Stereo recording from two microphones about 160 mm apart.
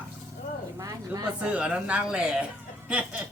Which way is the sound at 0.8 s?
20° right (ahead or behind).